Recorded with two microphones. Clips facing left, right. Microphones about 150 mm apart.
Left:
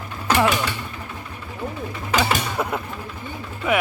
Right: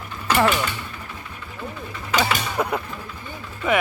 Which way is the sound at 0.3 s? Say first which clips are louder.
Even; 10° left (ahead or behind).